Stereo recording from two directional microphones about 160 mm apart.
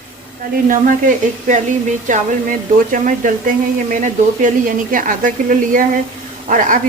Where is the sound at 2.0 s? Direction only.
55° right (ahead or behind).